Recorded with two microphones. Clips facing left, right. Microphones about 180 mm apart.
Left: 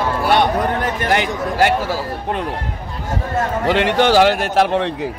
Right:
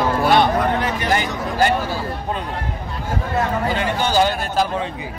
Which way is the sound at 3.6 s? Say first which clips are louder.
Left 6 dB; 80° left.